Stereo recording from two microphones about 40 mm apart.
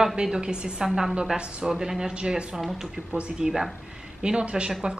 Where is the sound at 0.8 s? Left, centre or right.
Centre.